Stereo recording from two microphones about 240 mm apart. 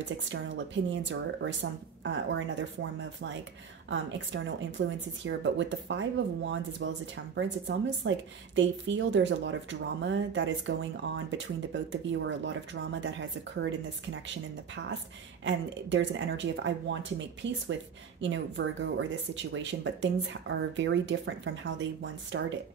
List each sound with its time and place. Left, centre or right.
0.0 s speech: right
14.2 s speech: right